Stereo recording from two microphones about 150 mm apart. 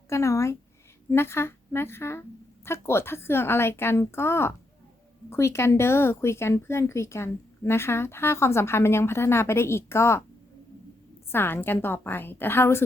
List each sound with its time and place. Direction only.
0.1 s a woman's voice: 20° left (ahead or behind)
11.3 s speech: 15° left (ahead or behind)